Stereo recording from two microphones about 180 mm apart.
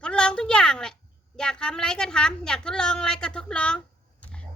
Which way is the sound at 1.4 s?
5° left (ahead or behind).